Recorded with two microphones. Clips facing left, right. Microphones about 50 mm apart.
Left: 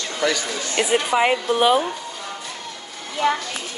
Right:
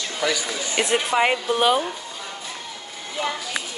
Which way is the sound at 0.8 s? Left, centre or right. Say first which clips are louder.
Left 2 dB; centre.